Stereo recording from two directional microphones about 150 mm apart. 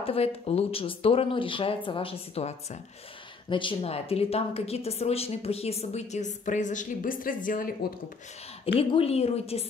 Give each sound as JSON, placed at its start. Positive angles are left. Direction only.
{"t": 0.0, "sound": "speech", "side_deg": 40}
{"t": 3.4, "sound": "a woman's voice", "side_deg": 35}
{"t": 8.7, "sound": "a woman's voice", "side_deg": 40}